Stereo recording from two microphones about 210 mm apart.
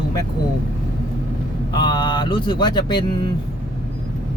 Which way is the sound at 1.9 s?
20° left (ahead or behind).